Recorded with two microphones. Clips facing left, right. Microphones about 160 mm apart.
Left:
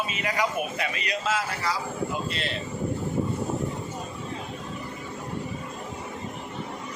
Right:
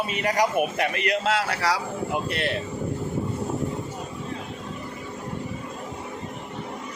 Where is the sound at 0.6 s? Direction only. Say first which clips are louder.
Right 6 dB; 60° right (ahead or behind).